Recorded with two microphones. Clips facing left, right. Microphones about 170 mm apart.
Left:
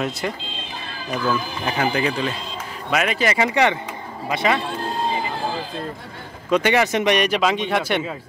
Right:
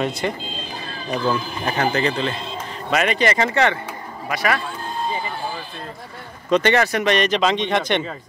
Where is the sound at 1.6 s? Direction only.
5° left (ahead or behind); by 4.8 s 25° left (ahead or behind).